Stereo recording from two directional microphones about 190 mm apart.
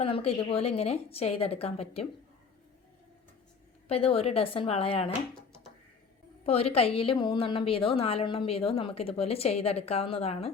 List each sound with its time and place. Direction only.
0.0 s a woman's voice: 30° left (ahead or behind)
3.8 s a woman's voice: 30° left (ahead or behind)
6.4 s a woman's voice: 30° left (ahead or behind)